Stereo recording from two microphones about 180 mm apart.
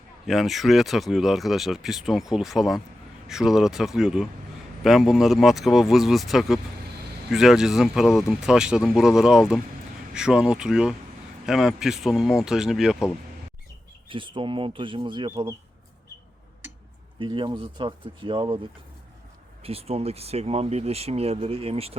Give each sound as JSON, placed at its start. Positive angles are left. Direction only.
{"t": 0.3, "sound": "speech", "side_deg": 0}
{"t": 14.1, "sound": "speech", "side_deg": -25}
{"t": 17.2, "sound": "speech", "side_deg": -25}
{"t": 19.6, "sound": "speech", "side_deg": -35}